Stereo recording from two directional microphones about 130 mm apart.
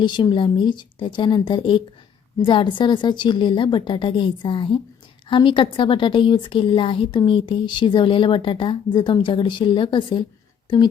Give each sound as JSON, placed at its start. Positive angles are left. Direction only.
{"t": 0.0, "sound": "a woman's voice", "side_deg": 35}